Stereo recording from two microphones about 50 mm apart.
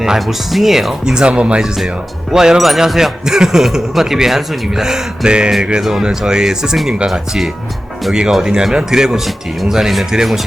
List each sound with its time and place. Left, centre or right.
0.2 s speech: centre; by 1.6 s right
1.6 s speech: centre